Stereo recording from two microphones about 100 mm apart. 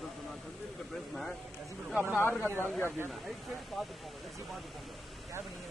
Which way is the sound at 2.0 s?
20° left (ahead or behind).